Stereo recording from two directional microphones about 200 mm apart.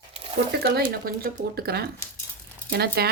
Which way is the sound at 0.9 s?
45° right (ahead or behind).